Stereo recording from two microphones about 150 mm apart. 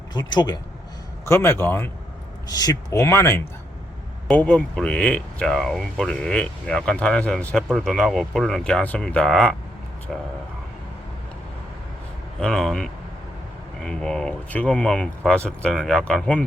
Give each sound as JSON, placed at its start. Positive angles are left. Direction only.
{"t": 0.1, "sound": "speech", "side_deg": 30}
{"t": 1.2, "sound": "speech", "side_deg": 15}
{"t": 12.4, "sound": "speech", "side_deg": 5}